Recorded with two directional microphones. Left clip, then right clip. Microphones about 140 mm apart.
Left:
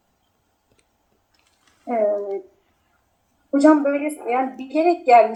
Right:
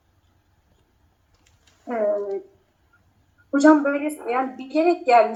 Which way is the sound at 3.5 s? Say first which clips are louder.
Left 1 dB; 5° left (ahead or behind).